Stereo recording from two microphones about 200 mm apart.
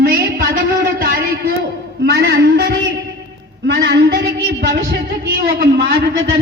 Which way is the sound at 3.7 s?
55° right (ahead or behind).